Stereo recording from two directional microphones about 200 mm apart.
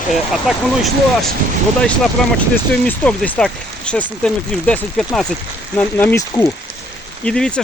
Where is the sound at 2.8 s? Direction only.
5° left (ahead or behind).